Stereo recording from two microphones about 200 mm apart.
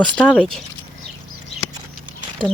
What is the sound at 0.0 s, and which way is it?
Speech, 5° left (ahead or behind).